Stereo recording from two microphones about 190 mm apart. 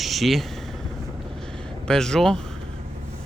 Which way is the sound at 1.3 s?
5° left (ahead or behind).